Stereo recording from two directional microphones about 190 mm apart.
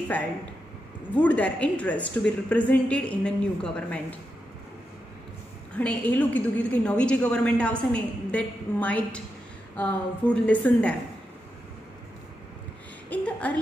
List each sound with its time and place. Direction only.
1.1 s a woman's voice: 5° left (ahead or behind)
5.7 s a woman's voice: 5° left (ahead or behind)
13.1 s a sound: 10° left (ahead or behind)